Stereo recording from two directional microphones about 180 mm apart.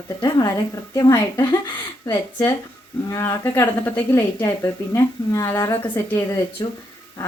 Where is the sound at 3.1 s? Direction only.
15° left (ahead or behind).